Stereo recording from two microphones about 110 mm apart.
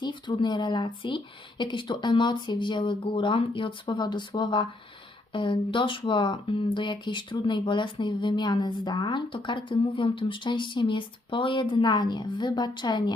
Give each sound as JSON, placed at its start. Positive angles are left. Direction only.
{"t": 0.0, "sound": "speech", "side_deg": 40}